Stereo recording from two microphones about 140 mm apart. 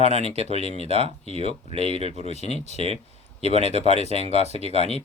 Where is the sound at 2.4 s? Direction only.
50° left (ahead or behind).